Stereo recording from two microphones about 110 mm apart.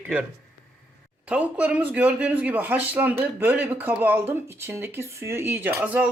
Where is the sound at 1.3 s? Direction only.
15° right (ahead or behind).